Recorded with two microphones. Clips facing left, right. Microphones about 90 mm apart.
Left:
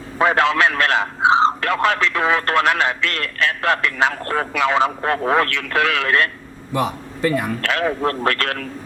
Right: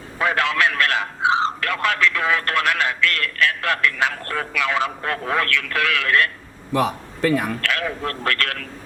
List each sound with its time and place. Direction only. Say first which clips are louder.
0.2 s a man's voice: left 4 dB; 25° left (ahead or behind)
6.7 s a man's voice: right 1 dB; 5° left (ahead or behind)
7.6 s a man's voice: left 5 dB; 25° left (ahead or behind)